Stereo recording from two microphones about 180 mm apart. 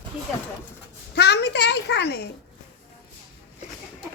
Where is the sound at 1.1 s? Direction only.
70° left (ahead or behind).